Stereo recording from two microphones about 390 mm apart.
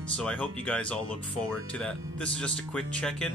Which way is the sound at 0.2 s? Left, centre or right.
Centre.